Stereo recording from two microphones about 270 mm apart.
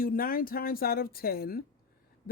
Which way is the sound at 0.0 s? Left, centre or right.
Left.